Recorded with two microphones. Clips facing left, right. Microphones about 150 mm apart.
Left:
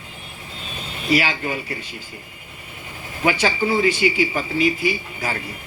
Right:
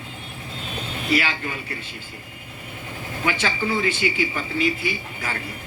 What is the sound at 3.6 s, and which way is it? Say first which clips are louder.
Speech: left 5 dB; 15° left (ahead or behind).